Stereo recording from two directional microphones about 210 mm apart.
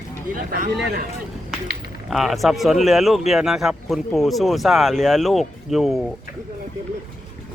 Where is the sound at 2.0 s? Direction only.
Centre (ahead or behind).